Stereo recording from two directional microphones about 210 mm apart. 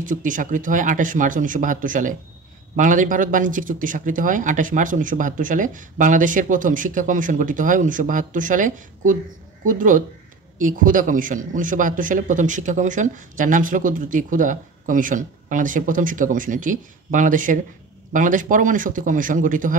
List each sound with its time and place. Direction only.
0.0 s a man's voice: 40° right (ahead or behind)